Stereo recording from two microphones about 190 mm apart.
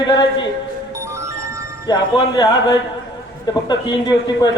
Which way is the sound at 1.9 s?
20° left (ahead or behind).